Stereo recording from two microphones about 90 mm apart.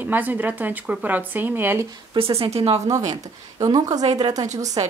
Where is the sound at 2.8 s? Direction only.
40° right (ahead or behind).